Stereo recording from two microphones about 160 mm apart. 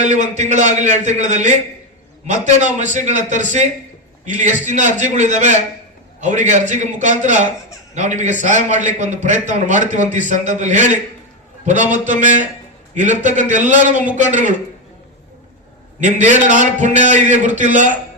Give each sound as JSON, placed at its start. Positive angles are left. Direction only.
{"t": 0.0, "sound": "a man's voice", "side_deg": -45}
{"t": 2.6, "sound": "a man's voice", "side_deg": -50}
{"t": 16.0, "sound": "a man's voice", "side_deg": -50}